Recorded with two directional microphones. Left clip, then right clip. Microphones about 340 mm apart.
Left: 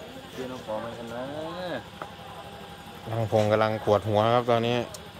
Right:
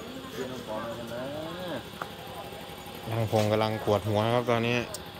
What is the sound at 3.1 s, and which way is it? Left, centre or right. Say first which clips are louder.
Speech: left 3 dB; centre.